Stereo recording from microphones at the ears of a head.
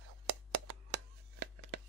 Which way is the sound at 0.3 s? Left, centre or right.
Right.